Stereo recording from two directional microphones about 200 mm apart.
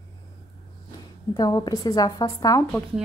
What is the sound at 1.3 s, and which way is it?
Speech, 20° left (ahead or behind).